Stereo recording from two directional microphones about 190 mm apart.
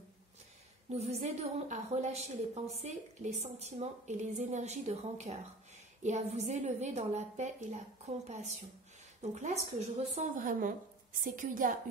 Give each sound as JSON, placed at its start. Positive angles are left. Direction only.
{"t": 0.8, "sound": "a woman's voice", "side_deg": -35}